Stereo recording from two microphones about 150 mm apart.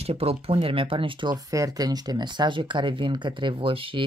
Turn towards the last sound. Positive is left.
turn(degrees=-35)  # may be behind; listen again after turning